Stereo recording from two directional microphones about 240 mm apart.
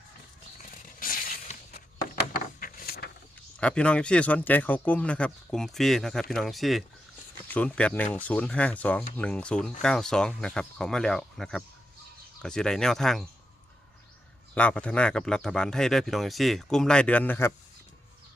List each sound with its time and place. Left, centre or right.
0.9 s a sound: left
2.6 s vehicle: left
3.6 s speech: centre
14.5 s speech: centre